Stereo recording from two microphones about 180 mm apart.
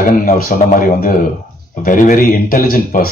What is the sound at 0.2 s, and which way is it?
Speech, 50° left (ahead or behind).